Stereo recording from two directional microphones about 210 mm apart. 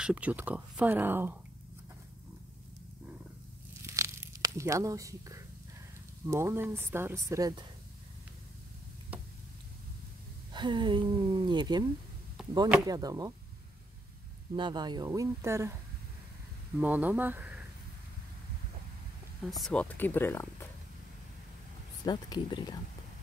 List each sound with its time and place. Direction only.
0.0 s speech: 5° right (ahead or behind)
3.8 s a sound: 15° right (ahead or behind)
6.2 s speech: 15° right (ahead or behind)
10.5 s speech: 20° right (ahead or behind)
12.8 s speech: 15° right (ahead or behind)
14.5 s speech: 20° right (ahead or behind)
16.8 s speech: 10° right (ahead or behind)
19.5 s speech: 5° left (ahead or behind)
22.0 s speech: 20° left (ahead or behind)